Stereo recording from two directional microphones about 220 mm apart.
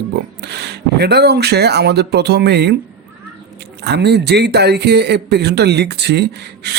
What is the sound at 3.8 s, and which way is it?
A man's voice, 50° right (ahead or behind).